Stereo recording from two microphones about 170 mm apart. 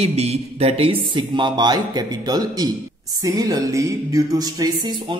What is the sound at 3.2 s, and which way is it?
Music, 20° right (ahead or behind).